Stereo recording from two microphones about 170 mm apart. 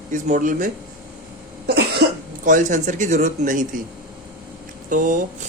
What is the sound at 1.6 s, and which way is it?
Cough, 75° right (ahead or behind).